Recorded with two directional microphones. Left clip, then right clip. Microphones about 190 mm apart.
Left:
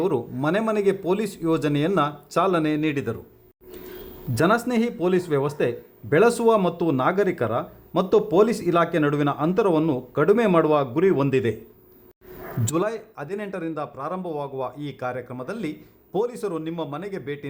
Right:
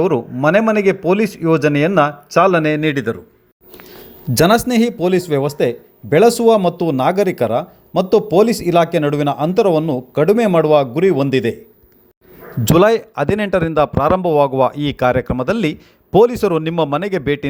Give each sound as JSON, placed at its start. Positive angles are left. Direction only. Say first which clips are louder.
{"t": 0.4, "sound": "a man's voice", "louder": "right 9 dB", "side_deg": -20}
{"t": 4.4, "sound": "speech", "louder": "right 8 dB", "side_deg": -20}
{"t": 12.6, "sound": "a man's voice", "louder": "right 14 dB", "side_deg": -40}